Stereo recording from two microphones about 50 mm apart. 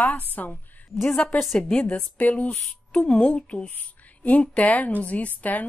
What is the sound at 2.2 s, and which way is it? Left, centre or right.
A woman's voice, left.